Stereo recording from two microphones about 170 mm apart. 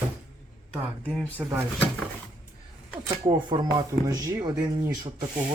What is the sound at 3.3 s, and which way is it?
Speech, 25° right (ahead or behind).